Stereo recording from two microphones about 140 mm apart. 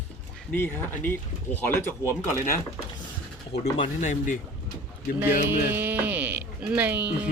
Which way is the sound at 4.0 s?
65° left (ahead or behind).